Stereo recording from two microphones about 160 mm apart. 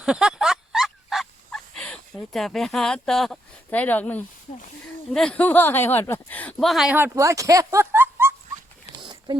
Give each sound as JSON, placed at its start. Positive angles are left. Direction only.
{"t": 0.0, "sound": "turkey", "side_deg": -5}
{"t": 5.1, "sound": "speech", "side_deg": 5}
{"t": 9.0, "sound": "a sound", "side_deg": -30}